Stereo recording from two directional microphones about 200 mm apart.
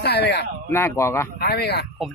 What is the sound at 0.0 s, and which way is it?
Speech, 55° left (ahead or behind).